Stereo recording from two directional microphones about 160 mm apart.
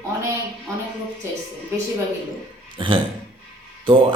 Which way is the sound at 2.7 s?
30° right (ahead or behind).